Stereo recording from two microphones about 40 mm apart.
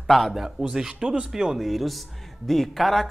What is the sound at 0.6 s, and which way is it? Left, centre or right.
Speech, centre.